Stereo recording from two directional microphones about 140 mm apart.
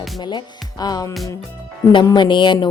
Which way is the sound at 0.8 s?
30° left (ahead or behind).